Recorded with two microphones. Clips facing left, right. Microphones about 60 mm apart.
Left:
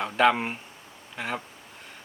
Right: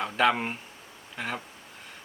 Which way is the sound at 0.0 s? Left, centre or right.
Centre.